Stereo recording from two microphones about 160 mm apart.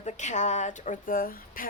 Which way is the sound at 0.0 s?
50° left (ahead or behind).